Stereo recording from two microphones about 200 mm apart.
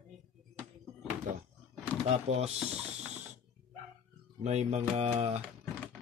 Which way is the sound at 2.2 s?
30° right (ahead or behind).